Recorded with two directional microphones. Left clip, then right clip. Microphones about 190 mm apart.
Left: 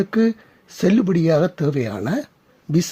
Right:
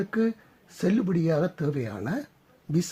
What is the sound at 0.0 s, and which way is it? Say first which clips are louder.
Speech: left 8 dB; 30° left (ahead or behind).